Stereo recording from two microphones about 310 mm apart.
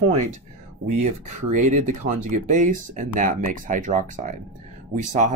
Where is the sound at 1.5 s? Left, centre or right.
Right.